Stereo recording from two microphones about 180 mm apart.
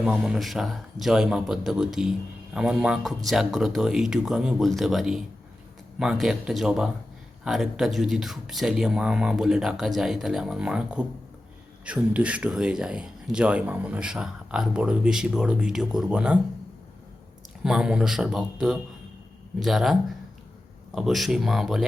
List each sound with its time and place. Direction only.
0.0 s speech: 5° right (ahead or behind)
17.6 s speech: 5° right (ahead or behind)
19.5 s speech: centre (ahead or behind)